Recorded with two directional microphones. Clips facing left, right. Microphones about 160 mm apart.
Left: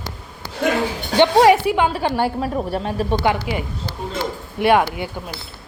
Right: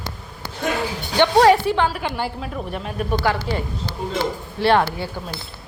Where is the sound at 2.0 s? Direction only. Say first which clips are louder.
Left 6 dB; 45° left (ahead or behind).